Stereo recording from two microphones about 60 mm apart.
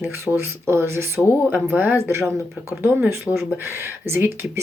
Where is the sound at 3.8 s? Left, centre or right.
Right.